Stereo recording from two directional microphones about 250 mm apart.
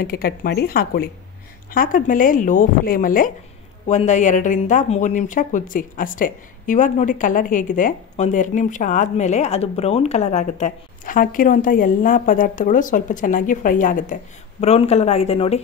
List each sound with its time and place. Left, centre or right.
0.0 s a woman's voice: left